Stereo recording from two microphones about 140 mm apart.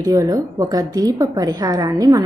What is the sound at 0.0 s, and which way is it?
A woman's voice, 25° right (ahead or behind).